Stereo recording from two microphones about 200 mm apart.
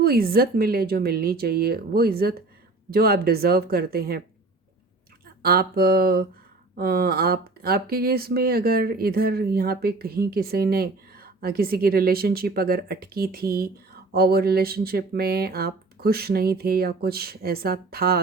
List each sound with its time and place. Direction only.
0.0 s speech: 50° right (ahead or behind)
5.4 s speech: 50° right (ahead or behind)